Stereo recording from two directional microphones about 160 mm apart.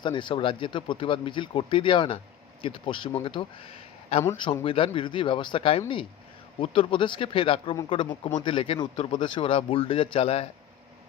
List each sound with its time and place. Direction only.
0.0 s speech: 30° left (ahead or behind)